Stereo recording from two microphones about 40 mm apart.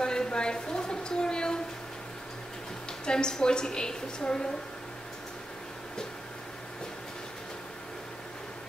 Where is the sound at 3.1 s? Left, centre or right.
Centre.